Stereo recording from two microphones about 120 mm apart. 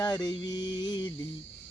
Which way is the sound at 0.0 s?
35° left (ahead or behind).